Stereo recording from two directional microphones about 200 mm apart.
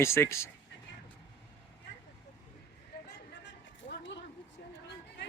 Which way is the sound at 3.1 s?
55° left (ahead or behind).